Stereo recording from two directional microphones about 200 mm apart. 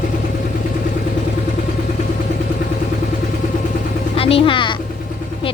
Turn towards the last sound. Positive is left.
turn(degrees=25)  # may be behind; listen again after turning